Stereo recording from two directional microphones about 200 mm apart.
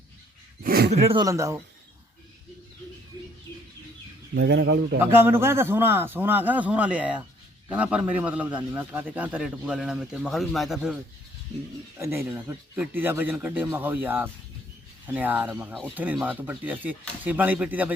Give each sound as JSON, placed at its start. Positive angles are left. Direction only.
{"t": 0.6, "sound": "a sound", "side_deg": -50}
{"t": 0.9, "sound": "speech", "side_deg": -30}
{"t": 1.2, "sound": "a man's voice", "side_deg": -15}
{"t": 4.4, "sound": "a man's voice", "side_deg": -60}
{"t": 4.9, "sound": "a man's voice", "side_deg": -10}
{"t": 11.9, "sound": "a man's voice", "side_deg": -15}